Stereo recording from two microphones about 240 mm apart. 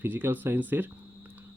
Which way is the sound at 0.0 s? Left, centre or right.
Centre.